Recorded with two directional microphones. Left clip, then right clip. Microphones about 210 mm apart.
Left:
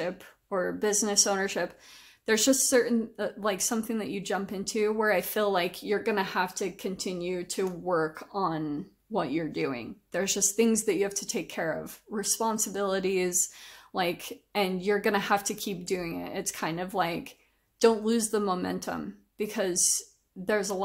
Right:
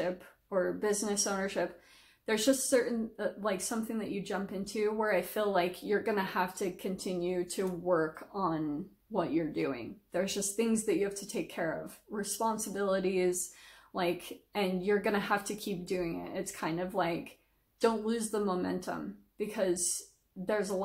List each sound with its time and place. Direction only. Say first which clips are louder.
0.0 s a woman's voice: left 1 dB; 40° left (ahead or behind)